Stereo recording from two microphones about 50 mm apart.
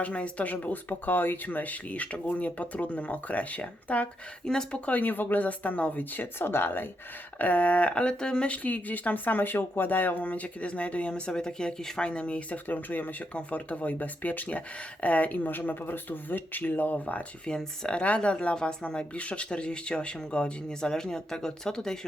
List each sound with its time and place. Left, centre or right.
0.0 s speech: left
4.4 s speech: centre
4.9 s speech: left
7.3 s speech: left
12.6 s speech: left
17.4 s speech: centre